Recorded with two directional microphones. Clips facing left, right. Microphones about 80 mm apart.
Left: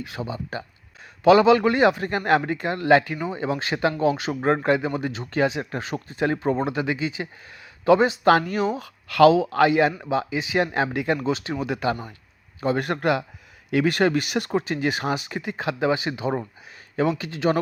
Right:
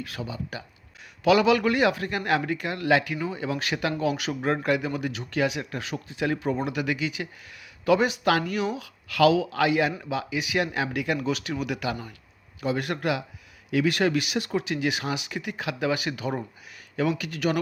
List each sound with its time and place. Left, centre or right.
0.0 s a man's voice: left